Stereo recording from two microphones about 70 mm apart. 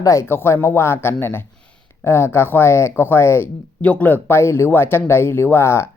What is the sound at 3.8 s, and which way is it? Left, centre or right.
Speech, left.